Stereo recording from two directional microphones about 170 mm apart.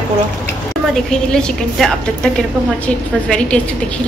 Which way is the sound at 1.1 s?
5° left (ahead or behind).